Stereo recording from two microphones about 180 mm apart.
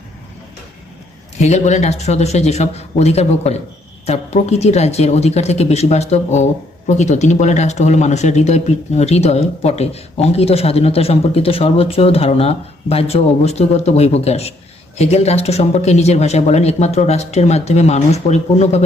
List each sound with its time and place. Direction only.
1.4 s a woman's voice: 40° left (ahead or behind)